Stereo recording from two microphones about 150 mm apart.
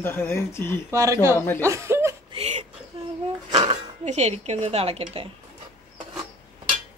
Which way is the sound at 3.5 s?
40° right (ahead or behind).